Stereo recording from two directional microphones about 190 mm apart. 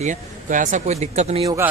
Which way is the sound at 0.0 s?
40° right (ahead or behind).